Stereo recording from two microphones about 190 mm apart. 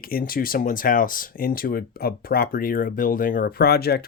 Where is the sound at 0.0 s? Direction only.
50° left (ahead or behind).